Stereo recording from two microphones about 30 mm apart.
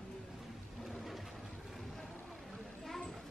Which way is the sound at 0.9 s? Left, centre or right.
Centre.